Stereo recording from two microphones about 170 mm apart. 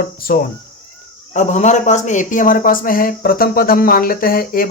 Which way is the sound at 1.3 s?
45° left (ahead or behind).